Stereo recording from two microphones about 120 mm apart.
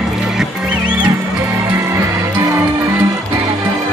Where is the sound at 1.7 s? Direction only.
20° right (ahead or behind).